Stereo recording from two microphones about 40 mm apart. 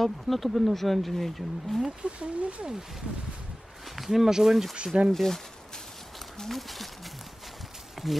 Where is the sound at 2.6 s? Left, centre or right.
Centre.